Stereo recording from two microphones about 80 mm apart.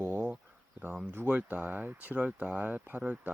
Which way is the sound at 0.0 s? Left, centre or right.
Right.